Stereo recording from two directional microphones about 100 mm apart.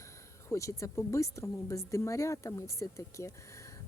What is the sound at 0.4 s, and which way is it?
Speech, 30° left (ahead or behind).